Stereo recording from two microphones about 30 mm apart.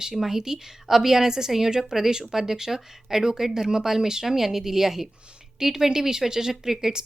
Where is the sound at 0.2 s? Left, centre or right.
Centre.